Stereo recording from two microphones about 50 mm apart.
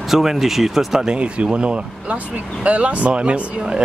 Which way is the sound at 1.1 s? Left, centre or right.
Right.